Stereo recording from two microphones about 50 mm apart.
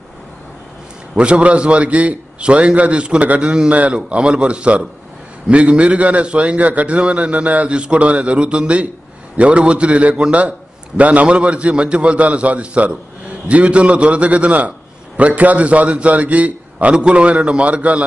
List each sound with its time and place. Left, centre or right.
1.1 s a man's voice: right